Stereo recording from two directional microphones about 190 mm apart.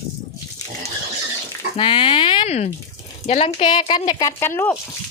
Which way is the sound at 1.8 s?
25° left (ahead or behind).